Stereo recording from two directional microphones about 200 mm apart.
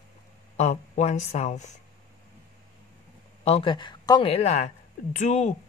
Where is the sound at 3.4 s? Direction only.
30° left (ahead or behind).